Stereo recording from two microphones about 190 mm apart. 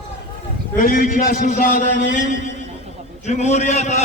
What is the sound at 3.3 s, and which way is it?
Speech, 35° left (ahead or behind).